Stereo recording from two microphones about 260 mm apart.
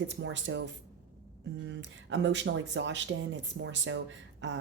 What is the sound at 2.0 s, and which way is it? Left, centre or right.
Speech, right.